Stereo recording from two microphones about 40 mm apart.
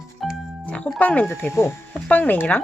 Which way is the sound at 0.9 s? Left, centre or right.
Left.